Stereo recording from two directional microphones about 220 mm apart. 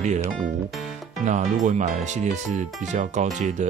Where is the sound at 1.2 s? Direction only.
30° right (ahead or behind).